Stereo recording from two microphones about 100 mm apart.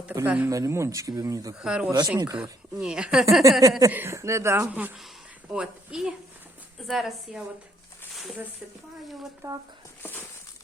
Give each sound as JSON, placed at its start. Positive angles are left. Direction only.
{"t": 0.3, "sound": "speech", "side_deg": -15}
{"t": 0.5, "sound": "speech", "side_deg": -30}
{"t": 1.5, "sound": "speech", "side_deg": -10}
{"t": 2.1, "sound": "speech", "side_deg": -35}
{"t": 2.4, "sound": "speech", "side_deg": -5}
{"t": 3.6, "sound": "speech", "side_deg": -35}
{"t": 4.7, "sound": "a woman's voice", "side_deg": -15}
{"t": 9.4, "sound": "speech", "side_deg": -30}
{"t": 10.0, "sound": "a sound", "side_deg": 20}